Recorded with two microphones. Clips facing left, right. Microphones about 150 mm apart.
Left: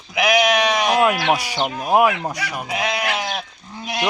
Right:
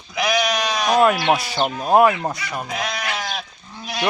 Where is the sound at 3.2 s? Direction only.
15° left (ahead or behind).